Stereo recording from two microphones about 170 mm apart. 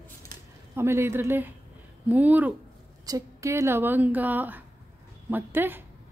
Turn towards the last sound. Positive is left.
turn(degrees=-10)  # may be behind; listen again after turning